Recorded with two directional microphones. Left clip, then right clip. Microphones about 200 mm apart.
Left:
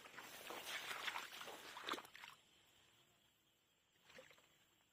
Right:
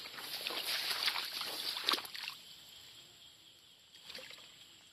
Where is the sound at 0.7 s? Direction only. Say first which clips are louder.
Right 10 dB; 25° left (ahead or behind).